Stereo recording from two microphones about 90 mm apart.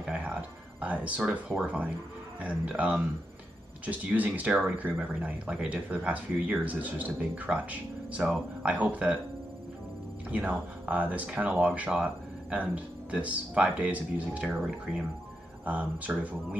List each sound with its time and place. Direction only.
0.0 s a sound: 15° right (ahead or behind)
2.4 s speech: 15° right (ahead or behind)
10.3 s speech: 15° right (ahead or behind)
15.6 s speech: 15° right (ahead or behind)